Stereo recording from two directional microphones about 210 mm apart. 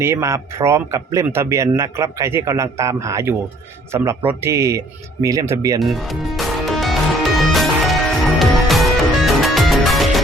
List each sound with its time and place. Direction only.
0.0 s speech: 10° right (ahead or behind)
5.8 s music: centre (ahead or behind)